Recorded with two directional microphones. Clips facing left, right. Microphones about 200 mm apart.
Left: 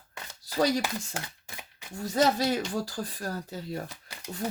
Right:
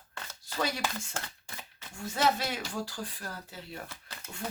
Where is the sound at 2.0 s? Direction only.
40° left (ahead or behind).